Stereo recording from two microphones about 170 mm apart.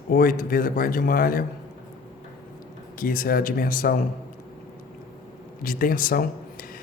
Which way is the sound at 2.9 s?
55° left (ahead or behind).